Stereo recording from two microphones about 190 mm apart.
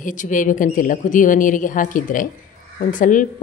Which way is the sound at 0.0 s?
45° left (ahead or behind).